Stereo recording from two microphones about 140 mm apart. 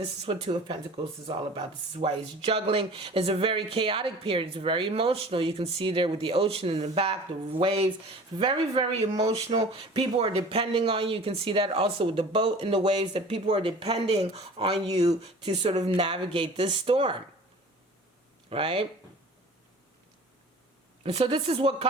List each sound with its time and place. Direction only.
0.0 s speech: 45° right (ahead or behind)
18.4 s speech: 40° right (ahead or behind)
21.0 s speech: 45° right (ahead or behind)